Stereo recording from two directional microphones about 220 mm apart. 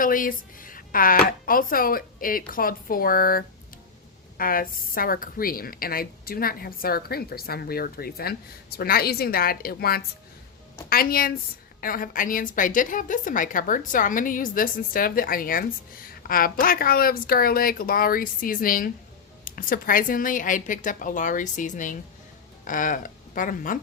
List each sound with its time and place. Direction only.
0.0 s a woman's voice: 40° left (ahead or behind)